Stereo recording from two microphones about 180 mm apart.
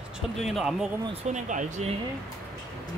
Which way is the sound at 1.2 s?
45° right (ahead or behind).